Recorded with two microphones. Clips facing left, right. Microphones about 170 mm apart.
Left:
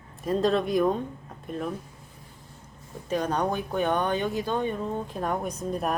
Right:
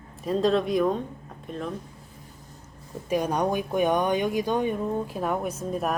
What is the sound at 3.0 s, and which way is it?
Speech, 10° right (ahead or behind).